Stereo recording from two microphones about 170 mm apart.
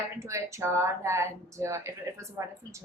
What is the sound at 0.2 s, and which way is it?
Speech, 15° right (ahead or behind).